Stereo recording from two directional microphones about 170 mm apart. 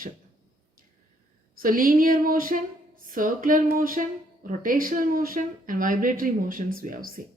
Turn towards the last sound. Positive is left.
turn(degrees=-55)  # may be behind; listen again after turning